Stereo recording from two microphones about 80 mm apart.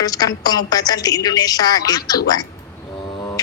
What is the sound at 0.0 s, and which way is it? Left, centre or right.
A woman's voice, left.